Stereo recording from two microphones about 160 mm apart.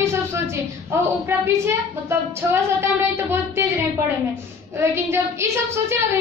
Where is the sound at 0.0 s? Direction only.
15° right (ahead or behind).